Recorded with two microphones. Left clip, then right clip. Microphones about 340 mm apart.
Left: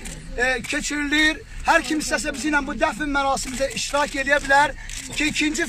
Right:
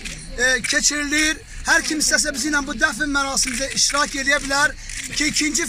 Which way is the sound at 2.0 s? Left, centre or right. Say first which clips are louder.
Right 4 dB; left.